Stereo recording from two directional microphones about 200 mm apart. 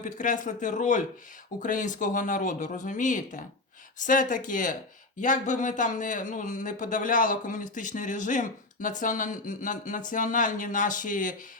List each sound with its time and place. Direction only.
0.0 s speech: 40° left (ahead or behind)